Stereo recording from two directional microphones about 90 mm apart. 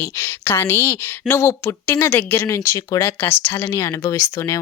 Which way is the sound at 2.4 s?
40° left (ahead or behind).